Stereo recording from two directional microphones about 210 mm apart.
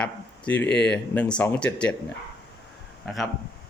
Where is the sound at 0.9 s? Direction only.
5° left (ahead or behind).